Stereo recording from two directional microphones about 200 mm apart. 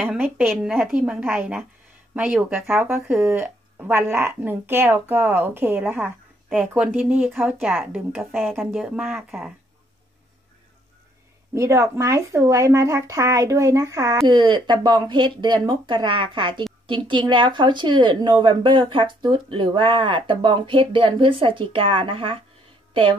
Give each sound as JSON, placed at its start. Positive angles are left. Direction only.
{"t": 0.0, "sound": "a woman's voice", "side_deg": -10}
{"t": 11.5, "sound": "speech", "side_deg": -15}